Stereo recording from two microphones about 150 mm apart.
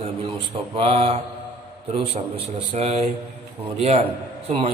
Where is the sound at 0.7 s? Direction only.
40° right (ahead or behind).